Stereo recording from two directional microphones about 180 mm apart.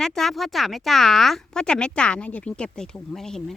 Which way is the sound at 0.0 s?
Centre (ahead or behind).